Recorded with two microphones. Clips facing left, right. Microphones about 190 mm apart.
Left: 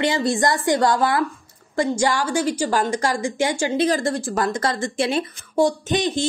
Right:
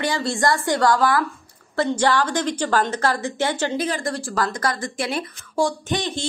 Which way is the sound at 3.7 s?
30° left (ahead or behind).